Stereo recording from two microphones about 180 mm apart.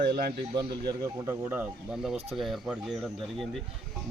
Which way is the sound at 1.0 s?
15° right (ahead or behind).